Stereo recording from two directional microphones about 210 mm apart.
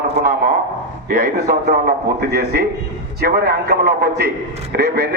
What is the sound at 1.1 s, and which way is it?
Speech, 40° right (ahead or behind).